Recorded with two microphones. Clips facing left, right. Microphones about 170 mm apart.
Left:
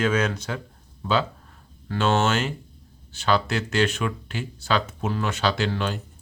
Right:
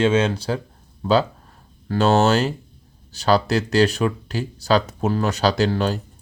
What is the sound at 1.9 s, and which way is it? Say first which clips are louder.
Speech: right 5 dB; 40° right (ahead or behind).